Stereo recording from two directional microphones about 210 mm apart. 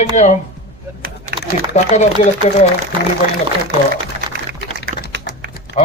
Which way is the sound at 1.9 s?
35° left (ahead or behind).